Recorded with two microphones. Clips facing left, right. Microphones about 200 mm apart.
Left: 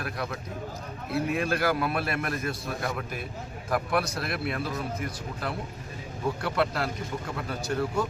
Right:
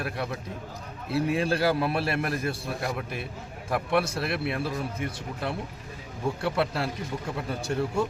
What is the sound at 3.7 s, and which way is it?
Speech, 25° right (ahead or behind).